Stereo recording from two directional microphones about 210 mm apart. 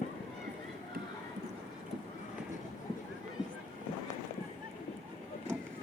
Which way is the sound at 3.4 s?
20° left (ahead or behind).